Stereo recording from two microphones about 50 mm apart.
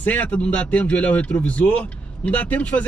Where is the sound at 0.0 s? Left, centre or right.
Left.